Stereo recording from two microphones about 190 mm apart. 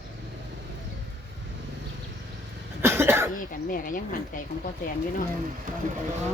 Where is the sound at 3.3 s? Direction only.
45° left (ahead or behind).